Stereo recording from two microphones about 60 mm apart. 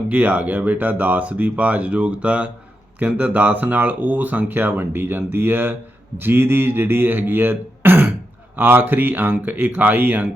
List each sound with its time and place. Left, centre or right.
0.1 s speech: right